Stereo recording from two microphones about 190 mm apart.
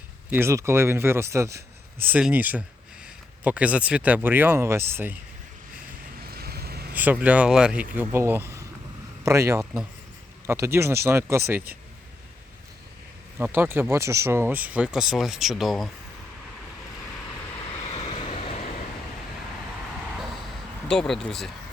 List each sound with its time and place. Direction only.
0.3 s speech: 10° right (ahead or behind)
6.2 s vehicle: 55° right (ahead or behind)
6.9 s speech: 10° right (ahead or behind)
13.4 s speech: 10° right (ahead or behind)
17.8 s vehicle: 30° left (ahead or behind)
20.8 s speech: 5° left (ahead or behind)